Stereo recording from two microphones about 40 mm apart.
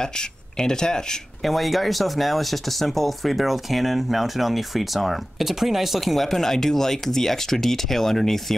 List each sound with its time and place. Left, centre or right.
0.6 s speech: centre
1.4 s speech: centre